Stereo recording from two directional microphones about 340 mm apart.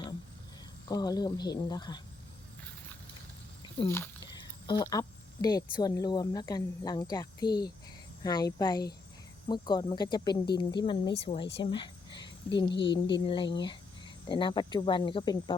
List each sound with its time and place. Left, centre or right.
0.9 s speech: centre
3.8 s speech: centre